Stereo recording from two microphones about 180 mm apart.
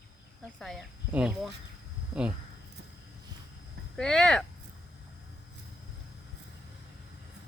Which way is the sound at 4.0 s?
5° left (ahead or behind).